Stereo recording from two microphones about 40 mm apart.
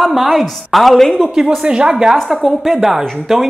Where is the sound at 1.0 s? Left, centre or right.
Centre.